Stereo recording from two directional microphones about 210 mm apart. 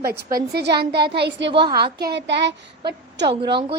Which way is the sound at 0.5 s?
50° right (ahead or behind).